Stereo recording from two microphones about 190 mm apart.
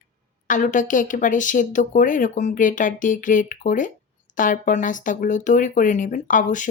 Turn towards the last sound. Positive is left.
turn(degrees=45)  # may be behind; listen again after turning